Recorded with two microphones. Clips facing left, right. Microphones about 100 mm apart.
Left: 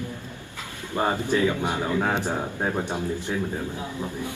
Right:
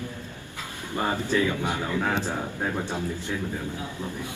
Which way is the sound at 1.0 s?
20° left (ahead or behind).